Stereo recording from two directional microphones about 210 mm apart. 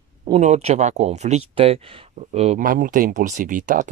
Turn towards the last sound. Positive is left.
turn(degrees=-40)  # may be behind; listen again after turning